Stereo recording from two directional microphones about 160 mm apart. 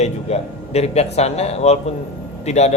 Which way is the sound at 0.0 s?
40° left (ahead or behind).